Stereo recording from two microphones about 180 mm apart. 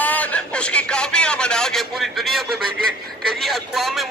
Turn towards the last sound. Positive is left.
turn(degrees=0)  # may be behind; listen again after turning